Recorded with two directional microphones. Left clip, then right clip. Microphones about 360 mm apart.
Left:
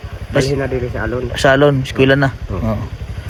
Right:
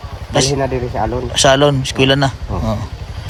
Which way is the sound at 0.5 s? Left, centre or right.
Right.